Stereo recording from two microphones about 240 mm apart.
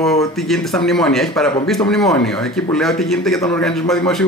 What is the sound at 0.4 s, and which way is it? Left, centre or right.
Speech, centre.